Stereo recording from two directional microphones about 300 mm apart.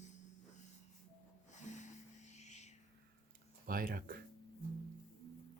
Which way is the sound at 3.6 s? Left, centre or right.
Right.